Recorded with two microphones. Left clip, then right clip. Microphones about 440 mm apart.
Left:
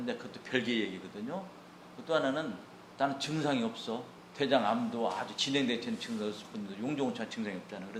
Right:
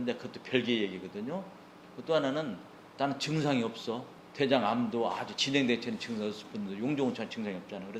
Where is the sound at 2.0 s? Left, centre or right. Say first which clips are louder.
Right 1 dB; right.